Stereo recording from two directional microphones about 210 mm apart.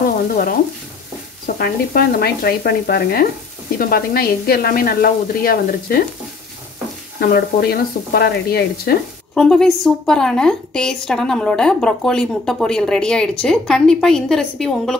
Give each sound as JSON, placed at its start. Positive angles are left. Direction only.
{"t": 1.6, "sound": "speech", "side_deg": 45}
{"t": 7.2, "sound": "speech", "side_deg": 45}
{"t": 9.3, "sound": "a woman's voice", "side_deg": 0}